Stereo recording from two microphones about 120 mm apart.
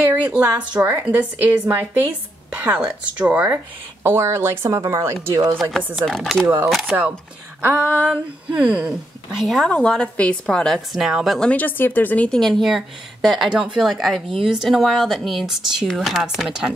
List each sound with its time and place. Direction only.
0.7 s speech: 20° right (ahead or behind)
5.6 s speech: centre (ahead or behind)
6.4 s speech: 20° right (ahead or behind); by 9.7 s centre (ahead or behind)
9.7 s a woman's voice: 10° left (ahead or behind)